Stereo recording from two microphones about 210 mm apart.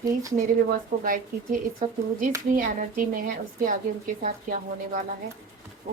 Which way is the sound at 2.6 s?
40° right (ahead or behind).